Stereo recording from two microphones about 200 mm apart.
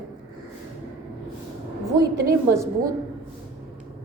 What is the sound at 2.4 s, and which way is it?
Speech, 15° right (ahead or behind).